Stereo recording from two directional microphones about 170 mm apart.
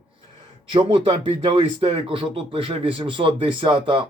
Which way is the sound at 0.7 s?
30° right (ahead or behind).